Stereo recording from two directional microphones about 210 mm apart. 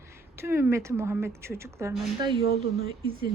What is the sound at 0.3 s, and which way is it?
A woman's voice, 10° right (ahead or behind).